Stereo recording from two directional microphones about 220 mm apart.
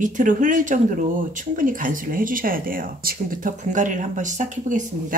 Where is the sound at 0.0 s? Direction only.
35° right (ahead or behind).